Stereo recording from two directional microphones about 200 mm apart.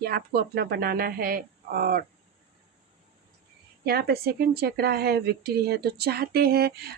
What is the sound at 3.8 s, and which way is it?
A woman's voice, 50° right (ahead or behind).